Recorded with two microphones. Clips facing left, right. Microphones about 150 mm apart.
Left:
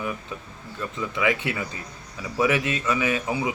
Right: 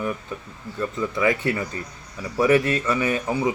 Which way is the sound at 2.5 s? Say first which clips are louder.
Right 6 dB; 40° right (ahead or behind).